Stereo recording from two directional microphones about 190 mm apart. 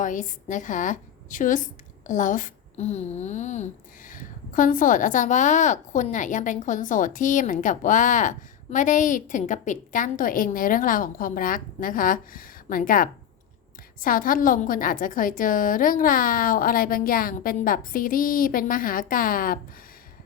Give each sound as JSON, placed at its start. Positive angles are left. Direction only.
{"t": 0.0, "sound": "speech", "side_deg": 45}